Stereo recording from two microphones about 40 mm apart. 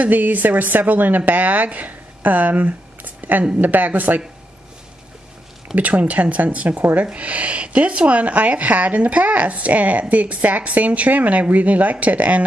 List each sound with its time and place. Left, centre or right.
0.1 s speech: right
5.8 s speech: right